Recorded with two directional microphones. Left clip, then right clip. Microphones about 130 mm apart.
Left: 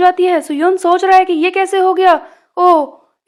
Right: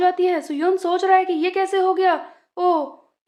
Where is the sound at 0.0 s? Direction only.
40° left (ahead or behind).